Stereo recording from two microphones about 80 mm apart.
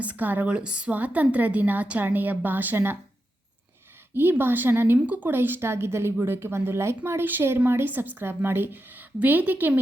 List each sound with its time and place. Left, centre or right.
0.0 s speech: centre
4.1 s speech: right